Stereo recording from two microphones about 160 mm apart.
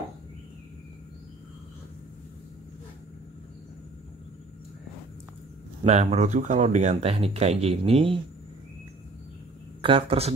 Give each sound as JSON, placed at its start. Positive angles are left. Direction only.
{"t": 5.9, "sound": "speech", "side_deg": -45}
{"t": 9.8, "sound": "speech", "side_deg": -35}